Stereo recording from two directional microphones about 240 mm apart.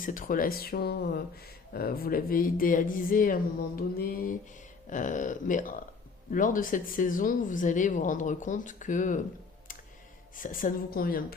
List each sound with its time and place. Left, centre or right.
0.0 s speech: left
10.3 s speech: left